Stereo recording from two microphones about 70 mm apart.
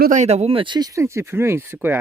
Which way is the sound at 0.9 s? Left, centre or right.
Right.